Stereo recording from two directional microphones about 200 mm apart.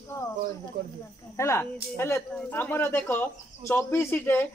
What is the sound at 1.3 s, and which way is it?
Speech, 15° left (ahead or behind).